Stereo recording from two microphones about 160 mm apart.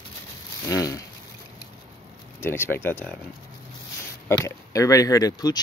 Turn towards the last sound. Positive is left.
turn(degrees=25)  # may be behind; listen again after turning